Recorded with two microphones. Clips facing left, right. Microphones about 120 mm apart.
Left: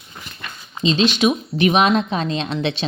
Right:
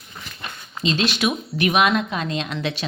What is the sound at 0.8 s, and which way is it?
A woman's voice, 20° left (ahead or behind).